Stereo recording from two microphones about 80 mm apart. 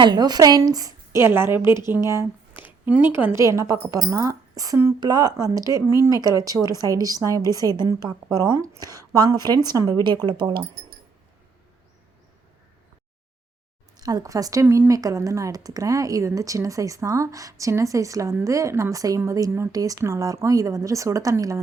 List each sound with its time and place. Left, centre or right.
0.0 s a woman's voice: right
1.2 s a woman's voice: right
2.0 s a sound: right
2.8 s a woman's voice: centre
3.3 s a woman's voice: right
8.5 s a woman's voice: right
8.8 s a woman's voice: right
10.2 s speech: right
13.9 s speech: right
14.6 s speech: right